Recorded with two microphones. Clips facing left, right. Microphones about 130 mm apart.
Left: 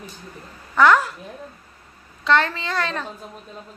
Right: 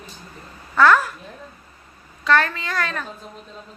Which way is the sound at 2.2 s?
25° left (ahead or behind).